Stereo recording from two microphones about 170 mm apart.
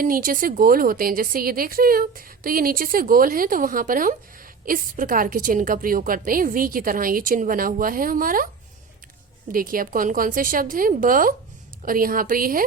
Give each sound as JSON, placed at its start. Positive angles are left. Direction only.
{"t": 0.0, "sound": "speech", "side_deg": -55}
{"t": 9.5, "sound": "speech", "side_deg": -55}